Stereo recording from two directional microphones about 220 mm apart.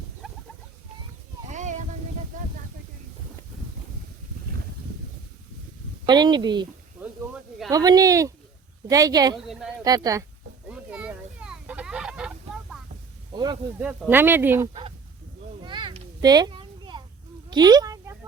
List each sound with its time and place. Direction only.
0.2 s a sound: centre (ahead or behind)
1.5 s a sound: 35° right (ahead or behind)
6.1 s a woman's voice: 20° right (ahead or behind)
7.7 s speech: 15° right (ahead or behind)
9.5 s speech: 5° right (ahead or behind)
9.8 s speech: 15° right (ahead or behind)
10.7 s fowl: 5° right (ahead or behind)
13.3 s speech: 20° right (ahead or behind)
13.7 s speech: 10° right (ahead or behind)
14.7 s honk: 25° right (ahead or behind)
15.6 s children playing: 20° right (ahead or behind)
17.5 s a sound: 20° right (ahead or behind)